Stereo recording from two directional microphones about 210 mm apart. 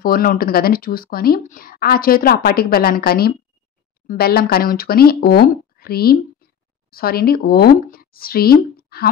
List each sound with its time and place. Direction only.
0.0 s speech: 45° left (ahead or behind)